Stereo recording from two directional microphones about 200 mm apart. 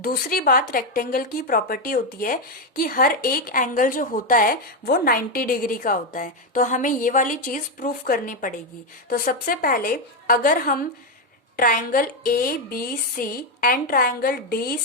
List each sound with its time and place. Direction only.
0.0 s a woman's voice: 45° left (ahead or behind)